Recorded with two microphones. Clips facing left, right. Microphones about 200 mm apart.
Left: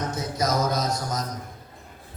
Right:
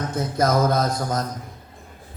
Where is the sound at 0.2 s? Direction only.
55° right (ahead or behind).